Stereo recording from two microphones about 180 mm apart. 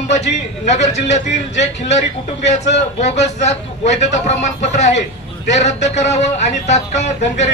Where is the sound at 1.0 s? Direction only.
40° left (ahead or behind).